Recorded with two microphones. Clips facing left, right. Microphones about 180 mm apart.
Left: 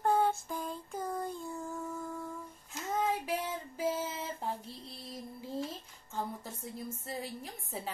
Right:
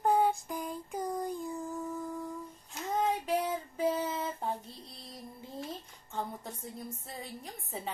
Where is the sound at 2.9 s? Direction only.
Centre (ahead or behind).